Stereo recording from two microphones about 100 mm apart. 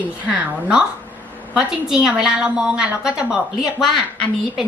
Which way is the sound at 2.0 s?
10° right (ahead or behind).